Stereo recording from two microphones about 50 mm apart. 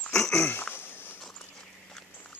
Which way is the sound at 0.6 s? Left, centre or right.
Left.